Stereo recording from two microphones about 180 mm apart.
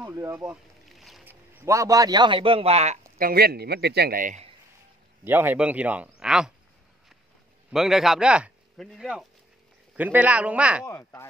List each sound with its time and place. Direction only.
0.0 s speech: 15° right (ahead or behind)
0.8 s boat: centre (ahead or behind)
1.2 s a man's voice: 10° right (ahead or behind); by 3.0 s 35° right (ahead or behind)
3.2 s a man's voice: 55° right (ahead or behind)
5.2 s speech: 10° right (ahead or behind)
7.7 s a man's voice: centre (ahead or behind)
10.9 s speech: 15° left (ahead or behind)